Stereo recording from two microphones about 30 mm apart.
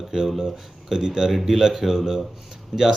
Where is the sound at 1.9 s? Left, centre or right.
Centre.